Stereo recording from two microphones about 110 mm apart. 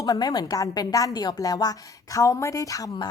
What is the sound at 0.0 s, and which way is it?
Speech, 35° left (ahead or behind).